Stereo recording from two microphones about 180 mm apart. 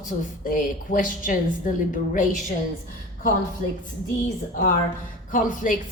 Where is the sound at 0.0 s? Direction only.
50° left (ahead or behind).